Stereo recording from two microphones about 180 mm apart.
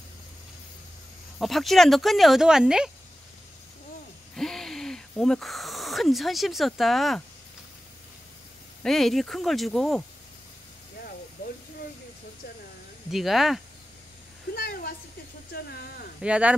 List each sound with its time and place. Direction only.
1.4 s speech: centre (ahead or behind)
4.4 s speech: centre (ahead or behind)
8.8 s speech: centre (ahead or behind)
13.1 s speech: centre (ahead or behind)
14.5 s a sound: 55° left (ahead or behind)
15.5 s speech: 60° left (ahead or behind)
16.2 s speech: 5° right (ahead or behind)